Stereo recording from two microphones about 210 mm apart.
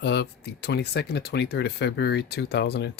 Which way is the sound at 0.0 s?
55° left (ahead or behind).